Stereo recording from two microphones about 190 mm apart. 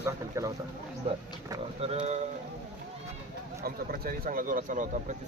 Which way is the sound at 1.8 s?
30° right (ahead or behind).